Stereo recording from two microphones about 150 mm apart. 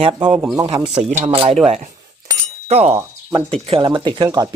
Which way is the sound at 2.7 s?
45° right (ahead or behind).